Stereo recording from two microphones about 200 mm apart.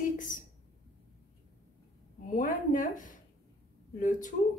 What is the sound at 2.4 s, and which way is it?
Speech, 40° left (ahead or behind).